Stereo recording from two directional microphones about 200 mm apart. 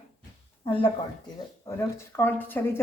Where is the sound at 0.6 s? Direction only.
25° left (ahead or behind).